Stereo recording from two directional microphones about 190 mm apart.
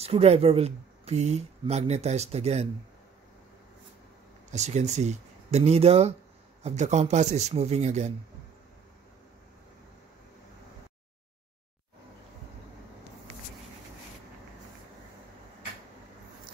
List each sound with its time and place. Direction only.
0.0 s speech: 30° right (ahead or behind)
4.5 s speech: 40° right (ahead or behind)